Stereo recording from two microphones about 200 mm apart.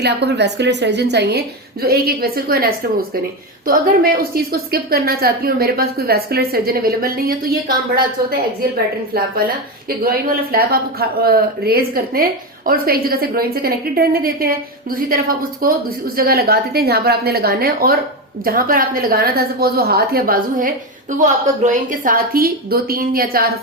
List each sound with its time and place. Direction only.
0.0 s a woman's voice: 55° right (ahead or behind)
9.1 s a woman's voice: 45° right (ahead or behind)